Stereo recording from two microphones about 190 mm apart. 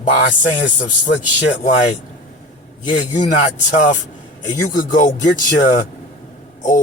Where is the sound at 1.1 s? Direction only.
70° left (ahead or behind).